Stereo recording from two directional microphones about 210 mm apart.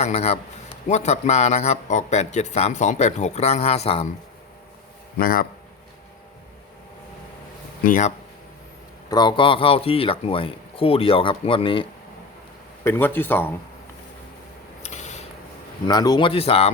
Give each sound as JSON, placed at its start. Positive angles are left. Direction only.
{"t": 0.0, "sound": "speech", "side_deg": 30}
{"t": 5.2, "sound": "a man's voice", "side_deg": 45}
{"t": 7.9, "sound": "speech", "side_deg": 40}
{"t": 9.0, "sound": "a man's voice", "side_deg": 20}
{"t": 12.8, "sound": "speech", "side_deg": 10}
{"t": 14.8, "sound": "a sound", "side_deg": 35}
{"t": 15.9, "sound": "a man's voice", "side_deg": 20}